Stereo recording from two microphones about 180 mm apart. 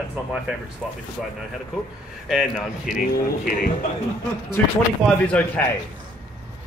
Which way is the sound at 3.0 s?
50° left (ahead or behind).